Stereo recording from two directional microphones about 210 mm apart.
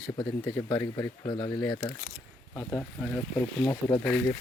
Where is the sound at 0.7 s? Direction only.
15° left (ahead or behind).